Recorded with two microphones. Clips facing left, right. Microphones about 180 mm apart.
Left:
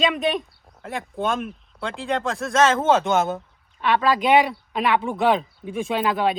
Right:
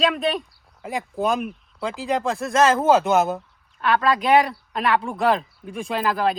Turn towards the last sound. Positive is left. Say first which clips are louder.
# left 1 dB
turn(degrees=0)  # may be behind; listen again after turning